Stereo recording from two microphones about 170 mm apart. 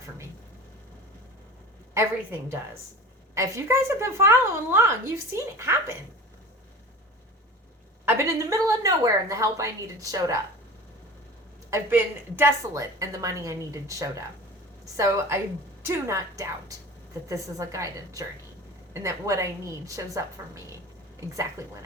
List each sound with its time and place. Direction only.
3.3 s a woman's voice: 15° right (ahead or behind)
8.0 s a woman's voice: 20° right (ahead or behind)
11.7 s a woman's voice: 10° right (ahead or behind)